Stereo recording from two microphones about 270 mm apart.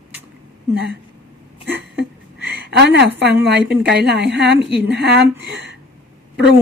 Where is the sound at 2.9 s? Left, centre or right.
Right.